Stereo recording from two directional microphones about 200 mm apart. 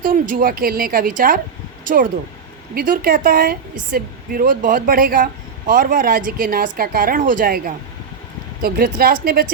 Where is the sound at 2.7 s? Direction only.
45° right (ahead or behind).